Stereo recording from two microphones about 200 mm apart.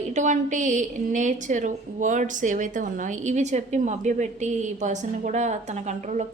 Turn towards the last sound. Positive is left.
turn(degrees=-35)  # may be behind; listen again after turning